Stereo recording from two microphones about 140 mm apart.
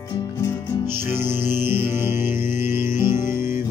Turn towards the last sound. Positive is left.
turn(degrees=-15)  # may be behind; listen again after turning